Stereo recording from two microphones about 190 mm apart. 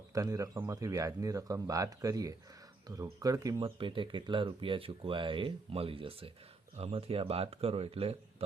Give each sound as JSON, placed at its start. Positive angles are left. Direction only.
{"t": 0.1, "sound": "speech", "side_deg": -20}